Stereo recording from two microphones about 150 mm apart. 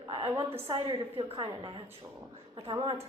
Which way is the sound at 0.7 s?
30° right (ahead or behind).